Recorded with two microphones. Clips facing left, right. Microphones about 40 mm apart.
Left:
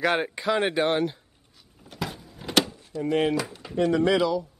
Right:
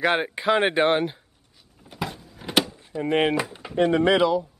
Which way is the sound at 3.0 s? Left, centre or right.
Right.